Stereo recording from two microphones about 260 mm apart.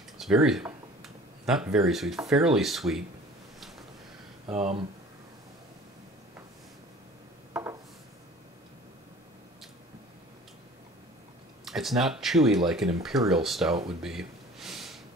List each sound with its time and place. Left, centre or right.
0.2 s speech: centre
4.5 s speech: right
7.5 s a sound: centre
11.6 s speech: centre
14.0 s gasp: centre